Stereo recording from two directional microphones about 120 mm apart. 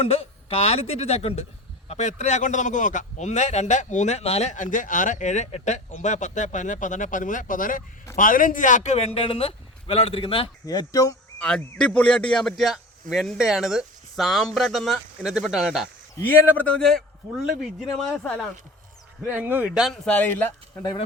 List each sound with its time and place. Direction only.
0.0 s a man's voice: 55° left (ahead or behind)
1.9 s a man's voice: 75° left (ahead or behind); by 10.5 s 50° left (ahead or behind)
10.7 s speech: 30° left (ahead or behind)
11.3 s a man's voice: 5° left (ahead or behind)
16.2 s a man's voice: 15° left (ahead or behind)
19.3 s speech: 15° right (ahead or behind)
19.9 s speech: 10° left (ahead or behind)